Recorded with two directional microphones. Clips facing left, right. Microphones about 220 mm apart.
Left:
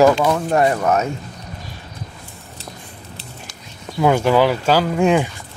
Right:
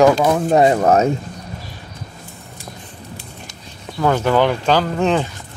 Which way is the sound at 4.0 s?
10° left (ahead or behind).